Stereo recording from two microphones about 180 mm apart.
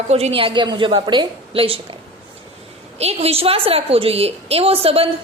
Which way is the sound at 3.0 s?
35° right (ahead or behind).